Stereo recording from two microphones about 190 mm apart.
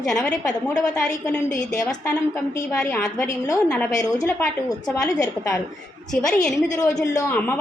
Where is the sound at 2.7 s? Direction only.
5° left (ahead or behind).